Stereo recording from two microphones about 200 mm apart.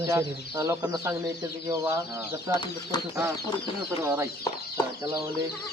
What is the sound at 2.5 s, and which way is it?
Speech, 20° left (ahead or behind).